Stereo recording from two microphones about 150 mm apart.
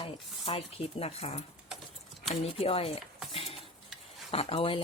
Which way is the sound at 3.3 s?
40° left (ahead or behind).